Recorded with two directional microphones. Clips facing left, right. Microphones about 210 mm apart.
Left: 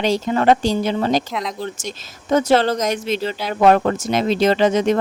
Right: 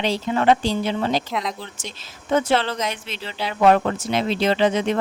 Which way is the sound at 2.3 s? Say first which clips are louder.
Left 5 dB; 40° left (ahead or behind).